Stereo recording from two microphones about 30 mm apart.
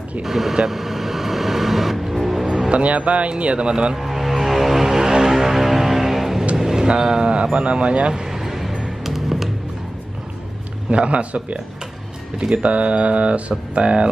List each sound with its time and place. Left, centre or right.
0.2 s speech: centre
0.7 s vehicle: centre
2.4 s music: centre
2.7 s speech: right
3.9 s music: centre
6.5 s vehicle: centre
6.9 s speech: right
8.1 s a sound: centre
9.0 s music: centre
10.9 s speech: right